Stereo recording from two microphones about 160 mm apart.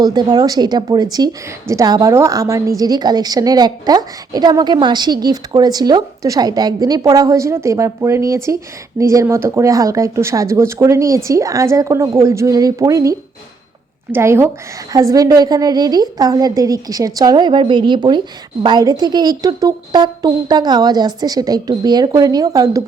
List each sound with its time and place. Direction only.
0.0 s a woman's voice: 25° right (ahead or behind)